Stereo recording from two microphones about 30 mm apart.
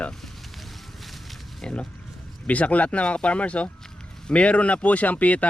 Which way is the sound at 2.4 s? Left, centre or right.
Left.